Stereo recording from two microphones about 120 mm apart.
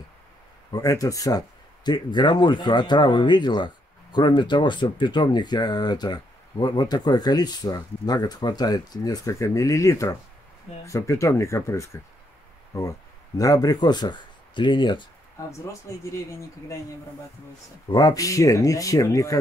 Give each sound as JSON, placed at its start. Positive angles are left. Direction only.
{"t": 0.7, "sound": "speech", "side_deg": 30}
{"t": 15.6, "sound": "speech", "side_deg": 25}
{"t": 17.8, "sound": "speech", "side_deg": 35}